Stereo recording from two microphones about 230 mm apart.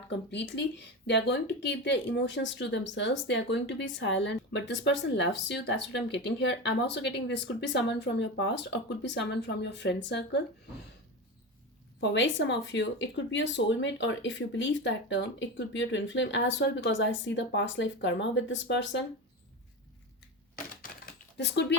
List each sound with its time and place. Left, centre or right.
0.3 s speech: left
11.9 s speech: left
21.3 s speech: left